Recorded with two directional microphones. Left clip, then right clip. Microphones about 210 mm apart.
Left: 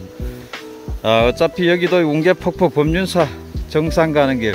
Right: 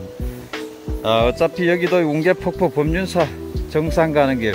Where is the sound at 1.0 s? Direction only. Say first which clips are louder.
Left 2 dB; 25° left (ahead or behind).